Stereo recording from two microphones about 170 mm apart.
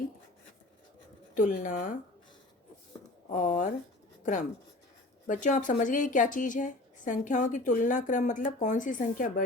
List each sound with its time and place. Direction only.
1.4 s a woman's voice: 50° left (ahead or behind)
3.2 s a woman's voice: 50° left (ahead or behind)
5.3 s a woman's voice: 50° left (ahead or behind)